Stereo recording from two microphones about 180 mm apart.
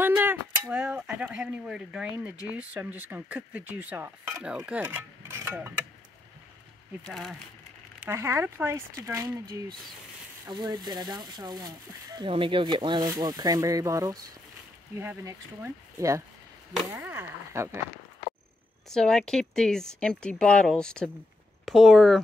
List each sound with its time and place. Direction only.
0.0 s speech: 10° right (ahead or behind)
7.0 s speech: centre (ahead or behind)
8.0 s speech: 15° right (ahead or behind)
18.9 s speech: 5° left (ahead or behind)